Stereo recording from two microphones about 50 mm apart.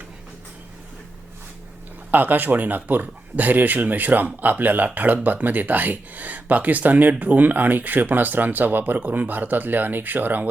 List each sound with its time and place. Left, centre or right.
2.0 s speech: right